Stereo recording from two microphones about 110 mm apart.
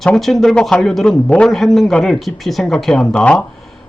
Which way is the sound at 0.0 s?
5° left (ahead or behind).